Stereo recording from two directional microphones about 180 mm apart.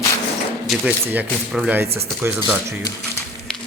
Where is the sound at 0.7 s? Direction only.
10° right (ahead or behind).